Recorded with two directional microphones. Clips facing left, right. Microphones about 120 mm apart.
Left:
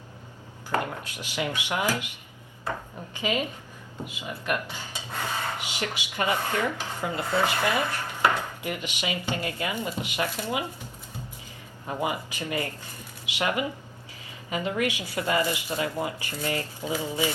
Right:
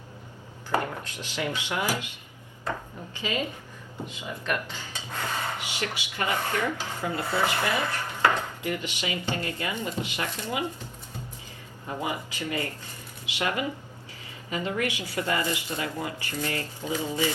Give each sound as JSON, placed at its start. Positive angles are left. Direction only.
{"t": 0.8, "sound": "a sound", "side_deg": 15}
{"t": 1.5, "sound": "rub", "side_deg": 15}
{"t": 3.2, "sound": "rub", "side_deg": 15}
{"t": 11.9, "sound": "speech", "side_deg": 20}
{"t": 14.5, "sound": "rub", "side_deg": 20}
{"t": 15.4, "sound": "speech", "side_deg": 20}